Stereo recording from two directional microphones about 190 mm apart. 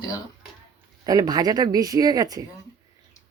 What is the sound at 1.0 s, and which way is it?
Speech, 20° right (ahead or behind).